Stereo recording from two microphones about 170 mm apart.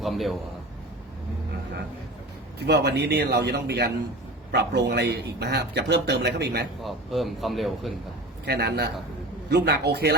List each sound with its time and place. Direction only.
0.0 s a man's voice: centre (ahead or behind)
2.6 s a man's voice: 75° right (ahead or behind)
6.8 s speech: centre (ahead or behind)
8.4 s a man's voice: 75° right (ahead or behind)